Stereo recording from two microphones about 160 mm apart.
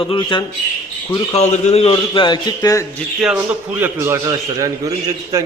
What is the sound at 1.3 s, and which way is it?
A man's voice, 45° left (ahead or behind).